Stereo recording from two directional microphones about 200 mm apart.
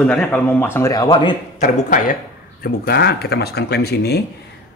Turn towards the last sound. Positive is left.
turn(degrees=55)  # may be behind; listen again after turning